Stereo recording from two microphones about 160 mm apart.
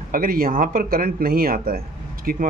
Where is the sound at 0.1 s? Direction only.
65° right (ahead or behind).